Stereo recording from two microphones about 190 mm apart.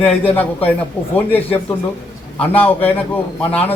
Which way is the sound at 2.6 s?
10° left (ahead or behind).